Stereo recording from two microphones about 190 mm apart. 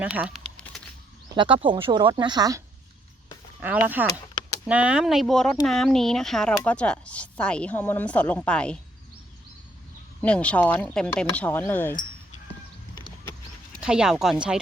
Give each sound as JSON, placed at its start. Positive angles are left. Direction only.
{"t": 0.0, "sound": "speech", "side_deg": -5}
{"t": 0.4, "sound": "a sound", "side_deg": 5}
{"t": 1.4, "sound": "speech", "side_deg": -25}
{"t": 3.6, "sound": "speech", "side_deg": -10}
{"t": 10.2, "sound": "speech", "side_deg": 5}
{"t": 13.8, "sound": "speech", "side_deg": -5}